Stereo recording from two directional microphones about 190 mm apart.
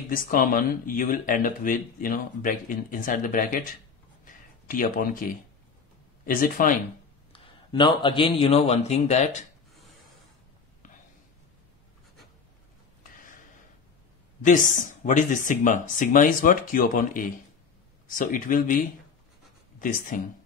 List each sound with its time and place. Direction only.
0.1 s speech: 50° left (ahead or behind)
4.2 s a sound: 45° left (ahead or behind)
6.2 s speech: 50° left (ahead or behind)
7.3 s a man's voice: 25° left (ahead or behind)
14.4 s speech: 45° left (ahead or behind)
19.8 s speech: 45° left (ahead or behind)